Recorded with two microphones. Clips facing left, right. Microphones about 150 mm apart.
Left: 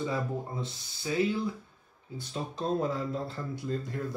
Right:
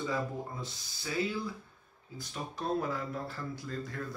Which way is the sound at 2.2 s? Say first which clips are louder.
Left 4 dB; 25° left (ahead or behind).